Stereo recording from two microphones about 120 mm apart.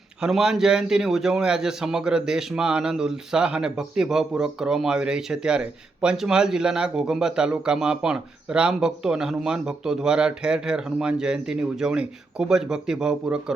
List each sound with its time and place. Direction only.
0.2 s a man's voice: 5° right (ahead or behind)